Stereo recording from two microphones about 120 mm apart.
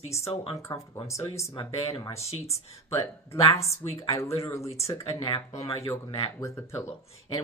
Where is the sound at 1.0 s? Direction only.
25° left (ahead or behind).